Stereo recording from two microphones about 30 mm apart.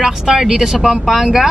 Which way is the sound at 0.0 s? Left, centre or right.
Centre.